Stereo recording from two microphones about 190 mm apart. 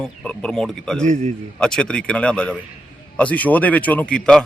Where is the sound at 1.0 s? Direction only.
40° right (ahead or behind).